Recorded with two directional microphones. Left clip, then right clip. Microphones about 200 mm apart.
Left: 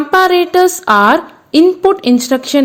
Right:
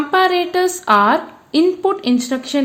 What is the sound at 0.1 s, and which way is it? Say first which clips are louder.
A woman's voice: left 6 dB; 30° left (ahead or behind).